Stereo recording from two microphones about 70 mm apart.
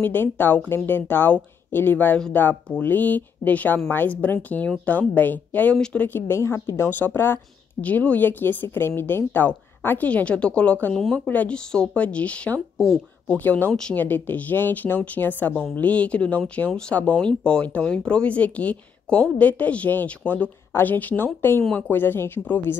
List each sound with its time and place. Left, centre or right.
0.0 s speech: left
6.9 s speech: left
7.8 s speech: left
11.0 s speech: centre
11.2 s speech: centre
13.4 s speech: left